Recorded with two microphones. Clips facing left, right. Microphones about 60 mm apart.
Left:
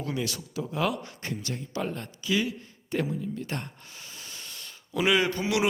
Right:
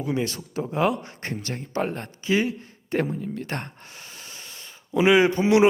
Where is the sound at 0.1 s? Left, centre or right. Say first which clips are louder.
Right 7 dB; right.